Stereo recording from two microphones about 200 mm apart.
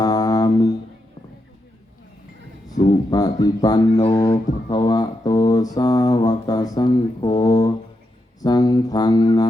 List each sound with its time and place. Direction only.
0.0 s music: 20° left (ahead or behind)
2.6 s speech: 20° left (ahead or behind)